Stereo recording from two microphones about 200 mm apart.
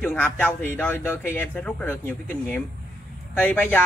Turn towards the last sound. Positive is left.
turn(degrees=10)  # may be behind; listen again after turning